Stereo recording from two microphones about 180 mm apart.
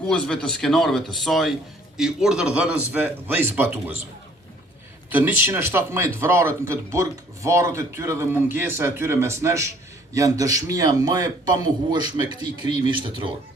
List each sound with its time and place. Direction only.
0.1 s speech: 5° left (ahead or behind); by 3.9 s 10° right (ahead or behind)
5.0 s a man's voice: 10° right (ahead or behind); by 13.3 s 25° right (ahead or behind)